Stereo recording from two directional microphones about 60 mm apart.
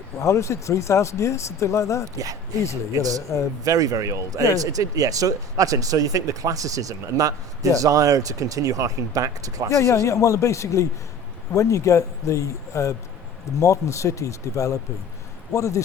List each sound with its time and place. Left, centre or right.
0.2 s speech: left
2.9 s speech: right
9.7 s speech: left